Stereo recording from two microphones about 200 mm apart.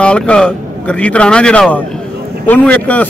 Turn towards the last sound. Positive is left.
turn(degrees=10)  # may be behind; listen again after turning